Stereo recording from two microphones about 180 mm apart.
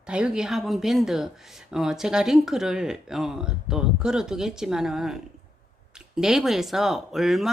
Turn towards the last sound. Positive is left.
turn(degrees=0)  # may be behind; listen again after turning